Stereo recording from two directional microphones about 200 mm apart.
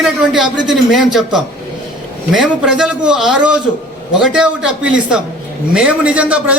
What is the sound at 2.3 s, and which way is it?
A man's voice, 5° right (ahead or behind).